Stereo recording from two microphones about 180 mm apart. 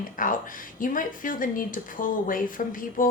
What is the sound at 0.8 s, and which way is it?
Speech, 50° left (ahead or behind).